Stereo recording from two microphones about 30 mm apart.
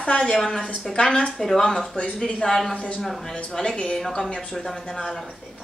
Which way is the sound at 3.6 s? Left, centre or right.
Left.